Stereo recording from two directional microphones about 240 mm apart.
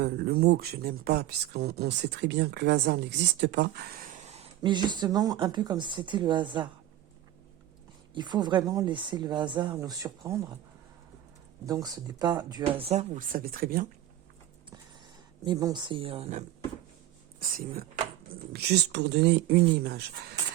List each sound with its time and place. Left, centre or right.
0.0 s speech: right
4.3 s speech: right
8.1 s speech: centre
11.6 s speech: centre; by 13.8 s right
15.4 s speech: centre
17.4 s speech: right